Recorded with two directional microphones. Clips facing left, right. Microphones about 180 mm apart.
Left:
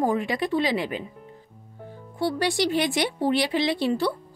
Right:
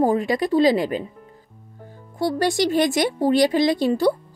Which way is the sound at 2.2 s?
45° right (ahead or behind).